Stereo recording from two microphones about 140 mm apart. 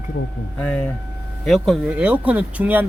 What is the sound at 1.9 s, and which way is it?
Speech, 10° right (ahead or behind).